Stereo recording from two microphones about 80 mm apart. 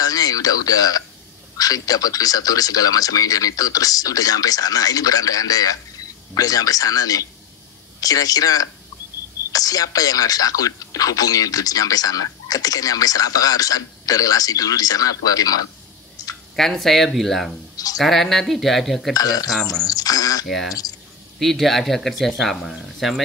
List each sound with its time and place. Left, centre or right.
0.0 s speech: left
16.5 s speech: centre
19.1 s speech: left
20.4 s speech: centre